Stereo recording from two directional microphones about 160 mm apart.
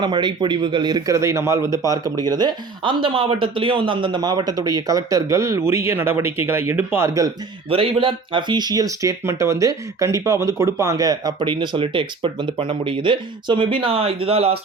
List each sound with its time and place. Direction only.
0.0 s speech: 30° right (ahead or behind)
7.7 s speech: 35° right (ahead or behind)